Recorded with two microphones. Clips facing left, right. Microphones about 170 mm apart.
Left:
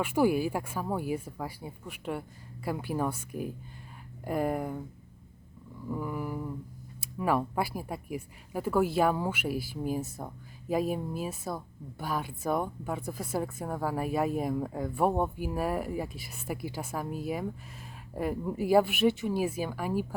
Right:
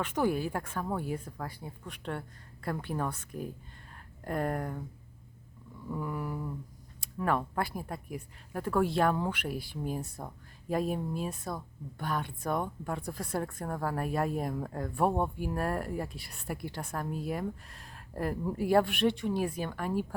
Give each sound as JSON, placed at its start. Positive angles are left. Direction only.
{"t": 0.0, "sound": "speech", "side_deg": 10}
{"t": 5.9, "sound": "speech", "side_deg": 5}